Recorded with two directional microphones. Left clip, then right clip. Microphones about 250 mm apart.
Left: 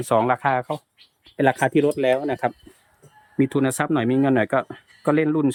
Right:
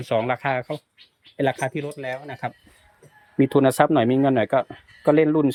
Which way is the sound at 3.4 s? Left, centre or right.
Centre.